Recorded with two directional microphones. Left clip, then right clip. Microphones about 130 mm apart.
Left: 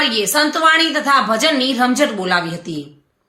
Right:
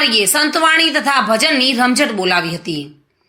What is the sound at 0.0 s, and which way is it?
A woman's voice, 15° right (ahead or behind).